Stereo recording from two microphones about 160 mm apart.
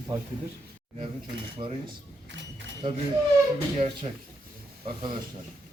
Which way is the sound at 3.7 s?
35° right (ahead or behind).